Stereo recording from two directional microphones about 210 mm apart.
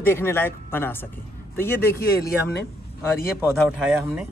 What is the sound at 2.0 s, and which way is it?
Speech, 45° left (ahead or behind).